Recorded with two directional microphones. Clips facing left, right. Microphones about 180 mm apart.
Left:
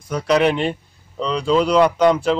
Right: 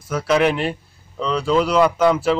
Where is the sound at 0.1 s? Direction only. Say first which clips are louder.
Left 1 dB; centre (ahead or behind).